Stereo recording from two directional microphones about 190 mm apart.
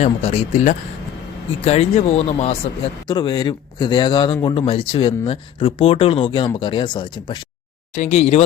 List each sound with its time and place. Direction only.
0.0 s speech: 35° left (ahead or behind)
3.1 s a man's voice: 25° left (ahead or behind)
7.9 s speech: 40° left (ahead or behind)